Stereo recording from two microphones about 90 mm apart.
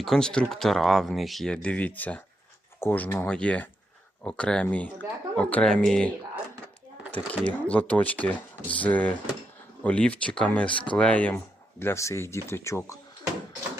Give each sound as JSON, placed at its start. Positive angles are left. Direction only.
{"t": 0.0, "sound": "speech", "side_deg": 5}
{"t": 1.6, "sound": "speech", "side_deg": 15}